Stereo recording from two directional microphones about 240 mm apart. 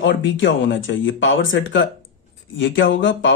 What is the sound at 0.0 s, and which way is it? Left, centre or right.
Speech, left.